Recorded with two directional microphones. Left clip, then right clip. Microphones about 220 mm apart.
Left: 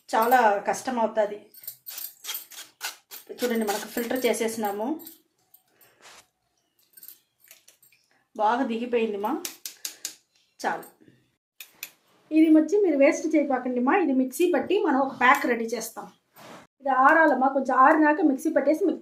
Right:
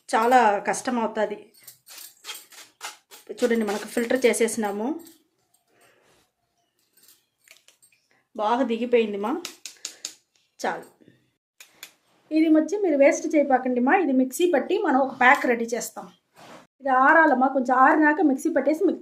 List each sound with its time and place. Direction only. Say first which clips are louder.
0.0 s speech: right 2 dB; 35° right (ahead or behind)
3.6 s speech: right 2 dB; 40° right (ahead or behind)
8.3 s speech: right 1 dB; 30° right (ahead or behind)
12.3 s a woman's voice: left 1 dB; 25° right (ahead or behind)
16.8 s a woman's voice: right 1 dB; 35° right (ahead or behind)